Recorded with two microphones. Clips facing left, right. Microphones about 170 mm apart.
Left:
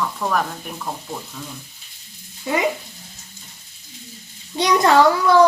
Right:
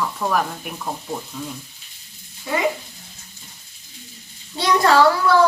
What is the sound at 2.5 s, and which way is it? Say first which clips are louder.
Speech: left 2 dB; 20° left (ahead or behind).